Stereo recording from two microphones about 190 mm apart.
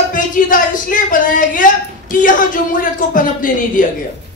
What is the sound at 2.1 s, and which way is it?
A man's voice, 45° left (ahead or behind).